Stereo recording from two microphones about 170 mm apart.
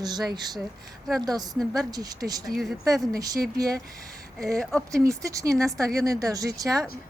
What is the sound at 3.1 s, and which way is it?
Speech, 20° right (ahead or behind).